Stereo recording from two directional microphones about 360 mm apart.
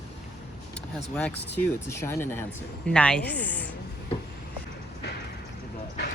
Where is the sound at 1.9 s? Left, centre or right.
Centre.